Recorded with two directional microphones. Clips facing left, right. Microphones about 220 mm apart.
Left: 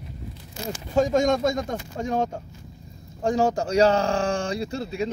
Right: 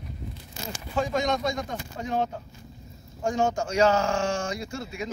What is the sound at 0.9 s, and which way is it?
A man's voice, 45° left (ahead or behind).